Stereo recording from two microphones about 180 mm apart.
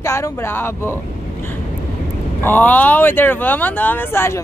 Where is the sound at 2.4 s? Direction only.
10° left (ahead or behind).